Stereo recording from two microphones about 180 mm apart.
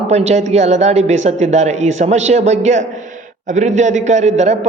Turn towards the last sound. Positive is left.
turn(degrees=-40)  # may be behind; listen again after turning